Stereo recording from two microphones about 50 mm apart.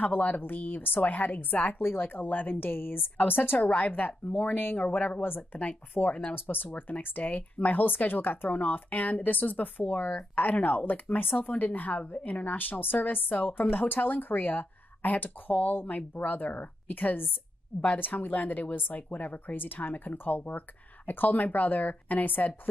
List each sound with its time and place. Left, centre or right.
0.0 s speech: left
1.8 s speech: left
3.5 s speech: left